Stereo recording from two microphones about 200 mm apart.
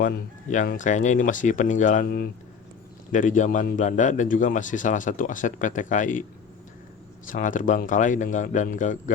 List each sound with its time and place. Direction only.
0.0 s a man's voice: 45° left (ahead or behind)
7.3 s a man's voice: 40° left (ahead or behind)